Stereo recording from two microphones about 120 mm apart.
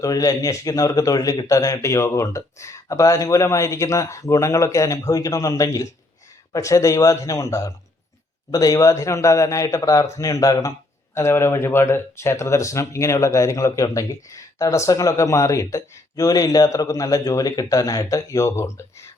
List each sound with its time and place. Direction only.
0.0 s speech: 30° left (ahead or behind)